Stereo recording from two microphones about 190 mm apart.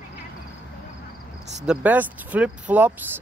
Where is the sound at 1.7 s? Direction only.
10° right (ahead or behind).